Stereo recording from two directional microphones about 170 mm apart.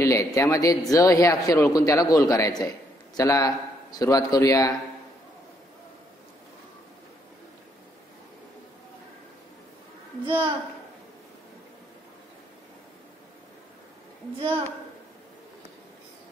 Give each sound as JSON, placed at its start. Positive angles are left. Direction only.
{"t": 0.0, "sound": "a man's voice", "side_deg": 20}
{"t": 10.2, "sound": "a child's voice", "side_deg": -30}